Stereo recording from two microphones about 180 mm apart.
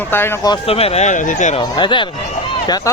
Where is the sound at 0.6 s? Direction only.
35° left (ahead or behind).